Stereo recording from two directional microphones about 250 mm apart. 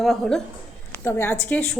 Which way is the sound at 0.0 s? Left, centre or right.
Centre.